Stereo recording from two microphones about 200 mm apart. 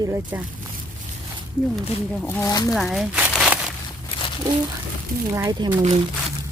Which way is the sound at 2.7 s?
Centre (ahead or behind).